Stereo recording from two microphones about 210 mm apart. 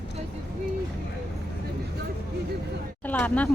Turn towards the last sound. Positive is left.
turn(degrees=5)  # may be behind; listen again after turning